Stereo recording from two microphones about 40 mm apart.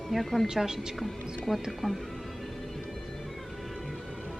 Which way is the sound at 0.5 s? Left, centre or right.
Centre.